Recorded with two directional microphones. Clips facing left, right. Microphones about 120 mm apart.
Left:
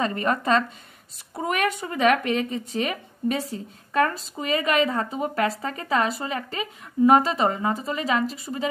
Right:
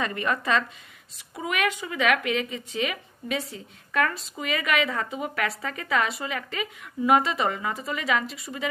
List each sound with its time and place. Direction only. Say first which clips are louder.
0.0 s speech: left 3 dB; 35° left (ahead or behind)